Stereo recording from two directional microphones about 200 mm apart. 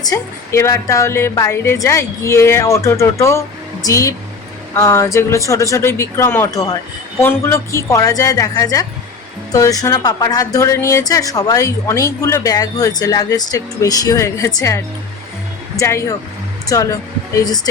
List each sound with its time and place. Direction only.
0.0 s speech: 15° left (ahead or behind)
15.8 s speech: 15° left (ahead or behind)